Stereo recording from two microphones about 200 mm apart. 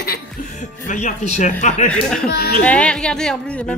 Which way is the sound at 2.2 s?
50° left (ahead or behind).